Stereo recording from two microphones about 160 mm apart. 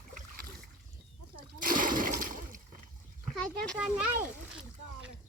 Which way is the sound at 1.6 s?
60° right (ahead or behind).